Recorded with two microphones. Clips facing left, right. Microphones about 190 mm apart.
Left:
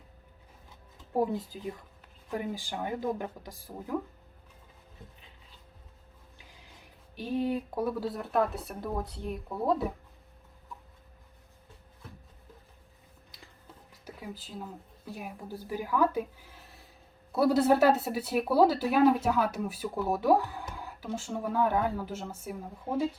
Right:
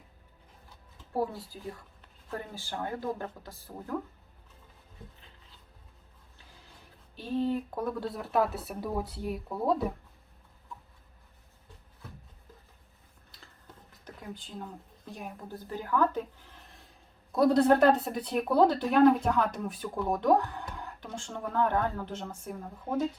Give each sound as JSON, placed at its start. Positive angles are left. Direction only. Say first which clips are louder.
{"t": 1.1, "sound": "speech", "louder": "left 3 dB", "side_deg": 20}
{"t": 7.2, "sound": "speech", "louder": "even", "side_deg": 15}
{"t": 14.0, "sound": "speech", "louder": "left 1 dB", "side_deg": 5}